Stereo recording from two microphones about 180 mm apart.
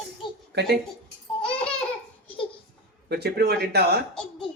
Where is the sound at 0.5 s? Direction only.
70° right (ahead or behind).